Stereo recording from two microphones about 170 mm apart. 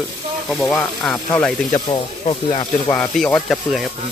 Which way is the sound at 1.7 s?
25° left (ahead or behind).